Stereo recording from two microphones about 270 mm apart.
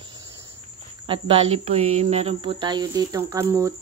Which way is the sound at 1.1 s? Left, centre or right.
Right.